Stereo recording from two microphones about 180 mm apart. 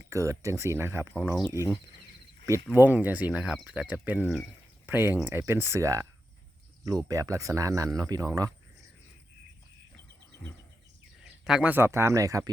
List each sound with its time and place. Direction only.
0.0 s speech: 15° right (ahead or behind)
2.7 s speech: 10° right (ahead or behind)
11.2 s speech: 5° right (ahead or behind)